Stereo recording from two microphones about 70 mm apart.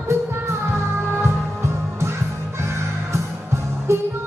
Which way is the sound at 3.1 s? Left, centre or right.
Right.